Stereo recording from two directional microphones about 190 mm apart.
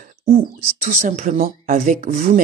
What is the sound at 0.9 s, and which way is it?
Speech, 40° right (ahead or behind).